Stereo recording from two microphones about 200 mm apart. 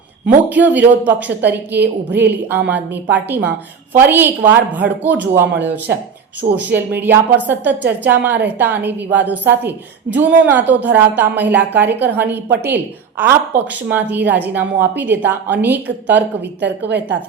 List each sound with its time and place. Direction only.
0.3 s a woman's voice: 10° right (ahead or behind)
16.4 s a woman's voice: 60° right (ahead or behind)